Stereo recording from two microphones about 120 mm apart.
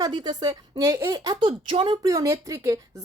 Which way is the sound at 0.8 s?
25° right (ahead or behind).